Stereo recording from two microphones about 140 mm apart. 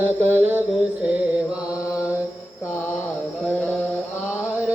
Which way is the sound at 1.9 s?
10° right (ahead or behind).